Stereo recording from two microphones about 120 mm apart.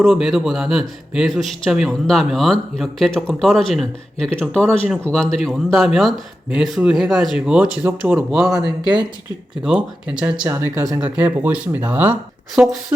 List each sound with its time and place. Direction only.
0.0 s speech: 5° right (ahead or behind)
8.3 s speech: centre (ahead or behind)
9.6 s speech: 10° right (ahead or behind)
10.5 s speech: 20° right (ahead or behind)
11.0 s speech: 10° right (ahead or behind)